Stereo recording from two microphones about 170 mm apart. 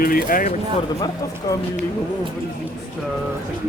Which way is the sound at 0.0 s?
60° left (ahead or behind).